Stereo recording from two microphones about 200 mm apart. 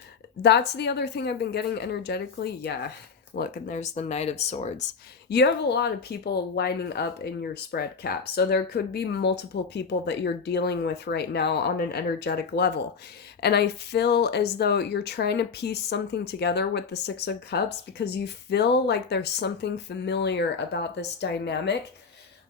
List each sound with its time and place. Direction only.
0.4 s speech: 55° left (ahead or behind); by 4.9 s 35° left (ahead or behind)
5.3 s speech: 55° left (ahead or behind)